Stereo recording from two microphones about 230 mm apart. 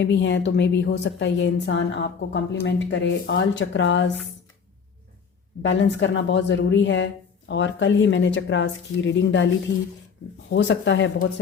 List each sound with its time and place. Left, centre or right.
0.0 s a woman's voice: left
5.6 s a woman's voice: left
10.5 s a woman's voice: left